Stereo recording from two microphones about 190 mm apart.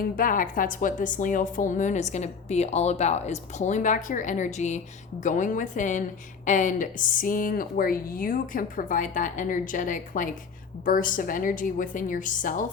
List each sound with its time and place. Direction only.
0.2 s a woman's voice: 45° left (ahead or behind)